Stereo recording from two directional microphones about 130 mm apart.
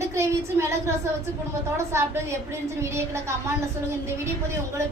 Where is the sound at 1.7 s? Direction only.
20° right (ahead or behind).